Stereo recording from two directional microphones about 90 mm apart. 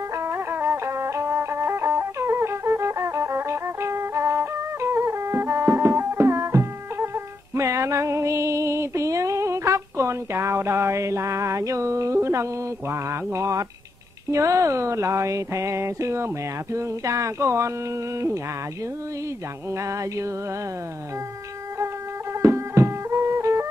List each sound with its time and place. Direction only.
0.2 s music: 25° right (ahead or behind)
12.9 s speech: 30° right (ahead or behind)
22.4 s music: 30° right (ahead or behind)